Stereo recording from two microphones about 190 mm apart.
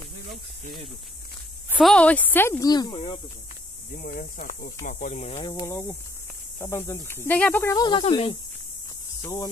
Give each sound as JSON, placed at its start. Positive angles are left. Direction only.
{"t": 1.7, "sound": "speech", "side_deg": 0}
{"t": 3.9, "sound": "speech", "side_deg": 45}
{"t": 5.4, "sound": "speech", "side_deg": 20}
{"t": 9.2, "sound": "hum", "side_deg": 20}